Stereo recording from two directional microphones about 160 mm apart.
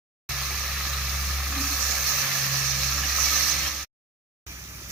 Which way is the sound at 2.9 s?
Centre (ahead or behind).